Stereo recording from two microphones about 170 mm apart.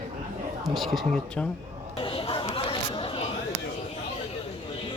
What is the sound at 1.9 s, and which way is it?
Chatter, 30° left (ahead or behind).